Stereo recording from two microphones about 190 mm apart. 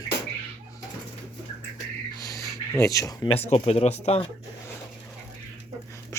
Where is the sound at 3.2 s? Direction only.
30° left (ahead or behind).